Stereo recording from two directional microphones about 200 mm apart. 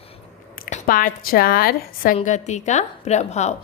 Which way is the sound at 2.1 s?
35° left (ahead or behind).